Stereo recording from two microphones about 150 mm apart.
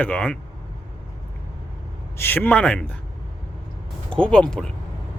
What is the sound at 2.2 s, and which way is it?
Speech, 15° left (ahead or behind).